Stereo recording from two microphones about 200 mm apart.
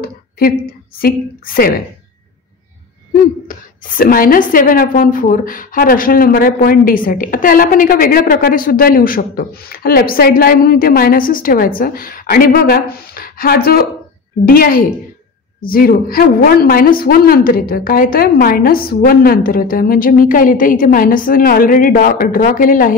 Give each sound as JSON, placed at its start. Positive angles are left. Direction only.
{"t": 0.0, "sound": "a woman's voice", "side_deg": 50}
{"t": 3.4, "sound": "a woman's voice", "side_deg": 45}